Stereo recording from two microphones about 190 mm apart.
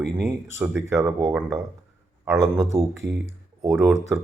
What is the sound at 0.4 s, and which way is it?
Speech, 15° right (ahead or behind).